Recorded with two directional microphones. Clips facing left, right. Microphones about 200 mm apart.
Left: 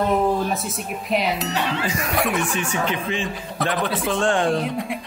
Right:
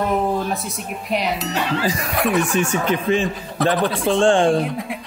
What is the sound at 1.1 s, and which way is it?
Speech, centre (ahead or behind).